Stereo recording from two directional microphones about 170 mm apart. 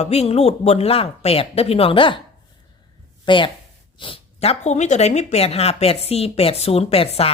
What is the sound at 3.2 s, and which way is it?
Speech, 30° left (ahead or behind).